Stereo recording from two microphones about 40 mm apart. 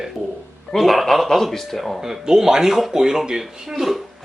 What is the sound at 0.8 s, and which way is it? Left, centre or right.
A man's voice, centre.